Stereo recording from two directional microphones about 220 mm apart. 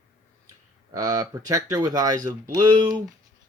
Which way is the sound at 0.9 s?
15° right (ahead or behind).